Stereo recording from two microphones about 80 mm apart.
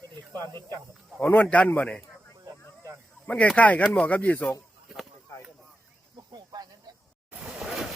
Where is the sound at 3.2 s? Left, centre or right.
Centre.